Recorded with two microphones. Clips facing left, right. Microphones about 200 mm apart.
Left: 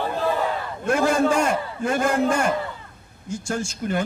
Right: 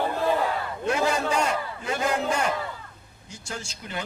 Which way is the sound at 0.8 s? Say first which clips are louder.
Left 6 dB; 50° left (ahead or behind).